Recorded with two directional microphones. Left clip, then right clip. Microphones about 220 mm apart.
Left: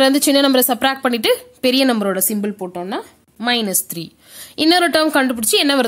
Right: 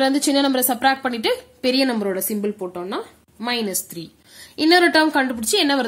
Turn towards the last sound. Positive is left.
turn(degrees=45)  # may be behind; listen again after turning